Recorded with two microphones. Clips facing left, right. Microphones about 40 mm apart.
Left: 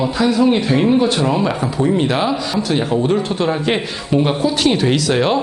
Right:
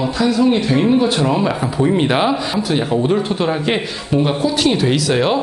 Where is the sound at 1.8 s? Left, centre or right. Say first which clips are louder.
Right 1 dB; right.